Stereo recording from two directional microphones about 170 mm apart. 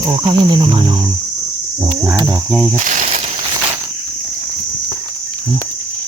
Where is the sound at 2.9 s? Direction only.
45° right (ahead or behind).